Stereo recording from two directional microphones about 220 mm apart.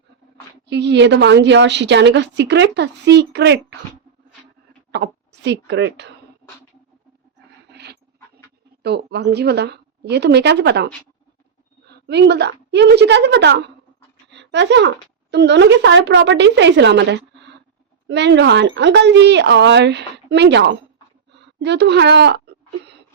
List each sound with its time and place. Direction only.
0.7 s a woman's voice: 50° right (ahead or behind)
4.9 s speech: 50° right (ahead or behind)
7.7 s dog: 50° right (ahead or behind)
8.8 s a woman's voice: 50° right (ahead or behind)
11.9 s a woman's voice: 50° right (ahead or behind)
21.3 s a sound: 50° right (ahead or behind)